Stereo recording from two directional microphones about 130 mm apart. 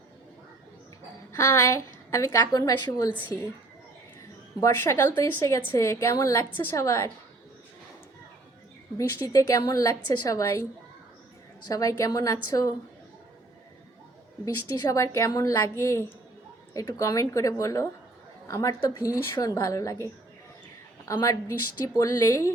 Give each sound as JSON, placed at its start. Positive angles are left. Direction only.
{"t": 1.3, "sound": "a woman's voice", "side_deg": 25}
{"t": 4.6, "sound": "a woman's voice", "side_deg": 20}
{"t": 9.0, "sound": "a woman's voice", "side_deg": 25}
{"t": 11.7, "sound": "a woman's voice", "side_deg": 25}
{"t": 14.4, "sound": "a woman's voice", "side_deg": 25}
{"t": 21.1, "sound": "a woman's voice", "side_deg": 25}